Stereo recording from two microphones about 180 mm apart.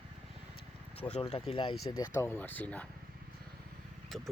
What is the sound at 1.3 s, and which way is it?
Speech, 35° left (ahead or behind).